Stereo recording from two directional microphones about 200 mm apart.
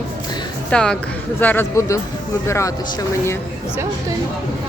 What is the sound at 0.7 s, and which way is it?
Speech, 5° left (ahead or behind).